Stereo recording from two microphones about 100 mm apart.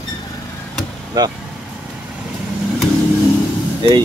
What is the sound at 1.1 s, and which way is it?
Speech, 40° right (ahead or behind).